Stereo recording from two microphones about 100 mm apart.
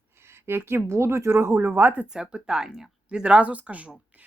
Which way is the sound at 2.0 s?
5° right (ahead or behind).